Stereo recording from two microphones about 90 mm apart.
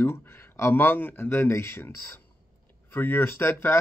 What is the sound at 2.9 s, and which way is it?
Speech, 20° left (ahead or behind).